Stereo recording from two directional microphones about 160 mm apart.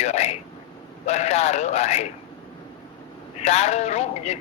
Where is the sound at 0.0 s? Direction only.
45° left (ahead or behind).